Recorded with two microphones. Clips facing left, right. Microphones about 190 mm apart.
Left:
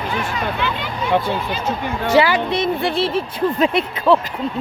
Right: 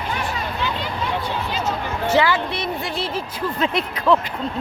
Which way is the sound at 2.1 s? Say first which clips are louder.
Left 4 dB; 15° left (ahead or behind).